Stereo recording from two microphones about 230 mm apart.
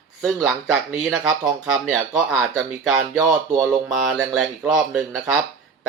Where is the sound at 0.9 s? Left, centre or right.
Centre.